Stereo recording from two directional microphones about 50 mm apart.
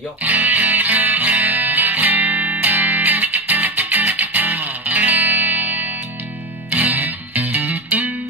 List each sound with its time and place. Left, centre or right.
0.2 s music: right